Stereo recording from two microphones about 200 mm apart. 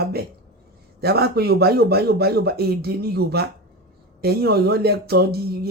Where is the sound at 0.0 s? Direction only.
50° right (ahead or behind).